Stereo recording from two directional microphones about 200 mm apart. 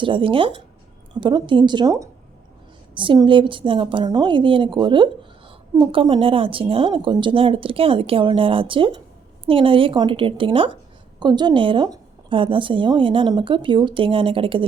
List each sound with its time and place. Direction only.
0.0 s a woman's voice: 25° right (ahead or behind)